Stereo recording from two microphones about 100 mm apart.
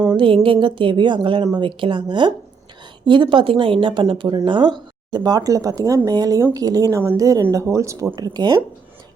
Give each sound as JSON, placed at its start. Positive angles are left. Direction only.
{"t": 0.0, "sound": "music", "side_deg": -40}
{"t": 0.3, "sound": "a woman's voice", "side_deg": -60}